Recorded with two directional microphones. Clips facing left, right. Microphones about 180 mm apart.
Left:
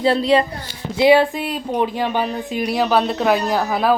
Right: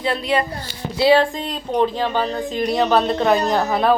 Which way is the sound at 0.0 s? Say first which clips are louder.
Left 5 dB; 30° left (ahead or behind).